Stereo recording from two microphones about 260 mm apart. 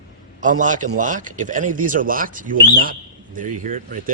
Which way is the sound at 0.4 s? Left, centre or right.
Right.